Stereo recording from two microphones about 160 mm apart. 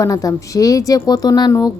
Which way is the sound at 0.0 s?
20° left (ahead or behind).